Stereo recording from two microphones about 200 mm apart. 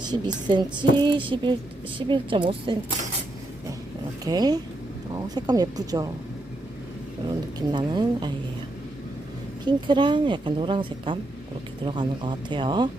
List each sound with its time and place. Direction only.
0.0 s a woman's voice: 20° right (ahead or behind)
4.3 s a woman's voice: 20° right (ahead or behind)
7.3 s a woman's voice: 20° right (ahead or behind)
9.6 s a woman's voice: 20° right (ahead or behind)